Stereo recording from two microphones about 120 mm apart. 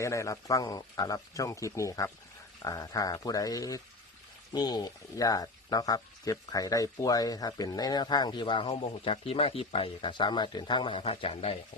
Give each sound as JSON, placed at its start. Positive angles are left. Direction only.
{"t": 0.0, "sound": "speech", "side_deg": 25}